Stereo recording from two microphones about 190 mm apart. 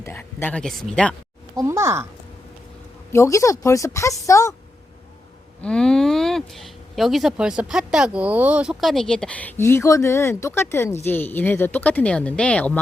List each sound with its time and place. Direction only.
0.0 s speech: 10° left (ahead or behind)
1.5 s speech: 15° right (ahead or behind)
3.1 s a woman's voice: 15° left (ahead or behind)
5.6 s speech: 5° left (ahead or behind)